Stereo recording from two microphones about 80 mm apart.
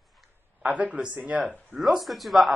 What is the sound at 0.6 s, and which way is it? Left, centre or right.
Speech, centre.